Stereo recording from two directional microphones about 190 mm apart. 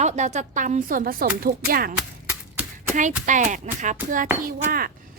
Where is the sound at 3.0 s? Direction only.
40° right (ahead or behind).